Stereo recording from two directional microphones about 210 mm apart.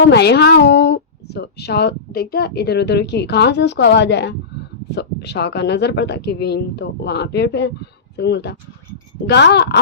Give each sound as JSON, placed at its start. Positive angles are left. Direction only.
{"t": 0.1, "sound": "speech", "side_deg": 50}